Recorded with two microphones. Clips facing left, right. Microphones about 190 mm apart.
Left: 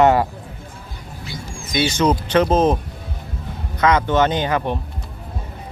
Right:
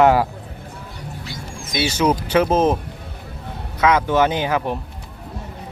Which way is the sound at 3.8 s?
5° right (ahead or behind).